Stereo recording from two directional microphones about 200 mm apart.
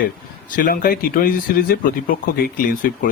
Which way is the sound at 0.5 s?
45° left (ahead or behind).